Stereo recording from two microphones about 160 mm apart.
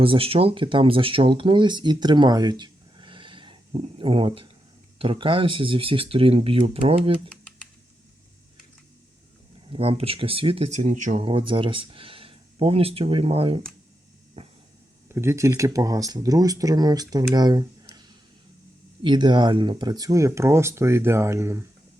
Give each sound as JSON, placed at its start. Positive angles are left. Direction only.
{"t": 0.0, "sound": "speech", "side_deg": -35}
{"t": 9.6, "sound": "speech", "side_deg": -35}
{"t": 11.2, "sound": "speech", "side_deg": -30}
{"t": 14.4, "sound": "a sound", "side_deg": -35}
{"t": 15.1, "sound": "speech", "side_deg": -15}
{"t": 19.0, "sound": "speech", "side_deg": -30}